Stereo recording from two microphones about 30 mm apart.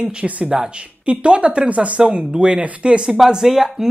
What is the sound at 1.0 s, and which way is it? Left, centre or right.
Speech, right.